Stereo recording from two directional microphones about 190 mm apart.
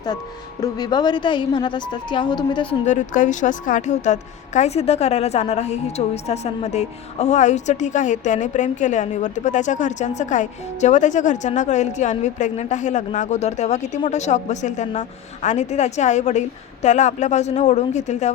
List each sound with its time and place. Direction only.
0.6 s a woman's voice: 20° left (ahead or behind)
2.8 s a woman's voice: 40° left (ahead or behind)